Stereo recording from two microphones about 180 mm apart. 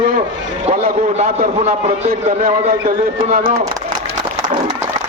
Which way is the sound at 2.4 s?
55° right (ahead or behind).